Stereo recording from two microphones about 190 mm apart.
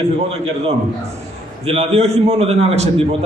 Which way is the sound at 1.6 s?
30° right (ahead or behind).